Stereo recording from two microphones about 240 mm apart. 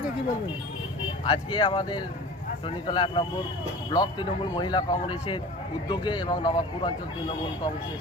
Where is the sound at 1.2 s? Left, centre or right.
Centre.